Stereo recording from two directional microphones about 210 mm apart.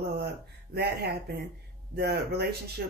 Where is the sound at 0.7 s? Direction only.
50° right (ahead or behind).